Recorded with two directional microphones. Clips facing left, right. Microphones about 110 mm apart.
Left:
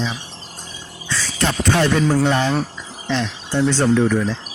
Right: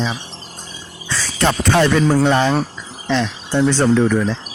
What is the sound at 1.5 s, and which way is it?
Speech, 65° right (ahead or behind).